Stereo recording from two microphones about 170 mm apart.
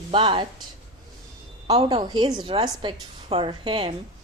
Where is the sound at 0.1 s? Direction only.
30° right (ahead or behind).